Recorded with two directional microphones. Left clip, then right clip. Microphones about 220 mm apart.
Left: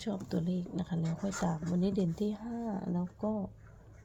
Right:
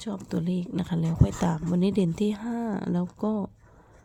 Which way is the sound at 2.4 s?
50° right (ahead or behind).